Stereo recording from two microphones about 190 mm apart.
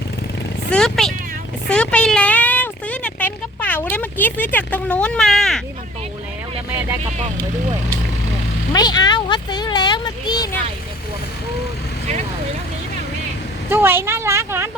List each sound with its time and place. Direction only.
0.7 s speech: 5° left (ahead or behind)
1.6 s a sound: 5° left (ahead or behind)
8.7 s speech: 20° left (ahead or behind)
13.7 s speech: 10° right (ahead or behind)